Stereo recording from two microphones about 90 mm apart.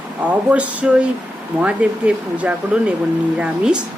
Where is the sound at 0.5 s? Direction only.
15° right (ahead or behind).